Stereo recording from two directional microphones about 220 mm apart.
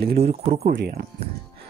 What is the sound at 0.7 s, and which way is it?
Speech, 45° right (ahead or behind).